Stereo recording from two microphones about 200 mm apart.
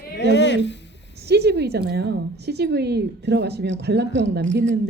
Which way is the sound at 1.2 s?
55° right (ahead or behind).